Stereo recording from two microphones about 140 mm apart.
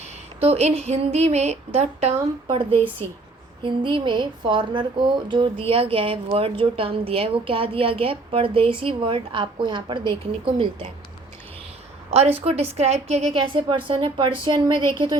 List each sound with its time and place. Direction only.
0.3 s speech: 50° right (ahead or behind)
2.5 s speech: 35° right (ahead or behind)
2.7 s a woman's voice: 15° left (ahead or behind)
3.6 s speech: 35° right (ahead or behind)
12.1 s speech: 45° right (ahead or behind)